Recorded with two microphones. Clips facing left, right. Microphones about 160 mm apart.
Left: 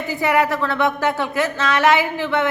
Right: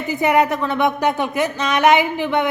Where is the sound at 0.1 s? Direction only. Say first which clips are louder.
Right 2 dB; 20° right (ahead or behind).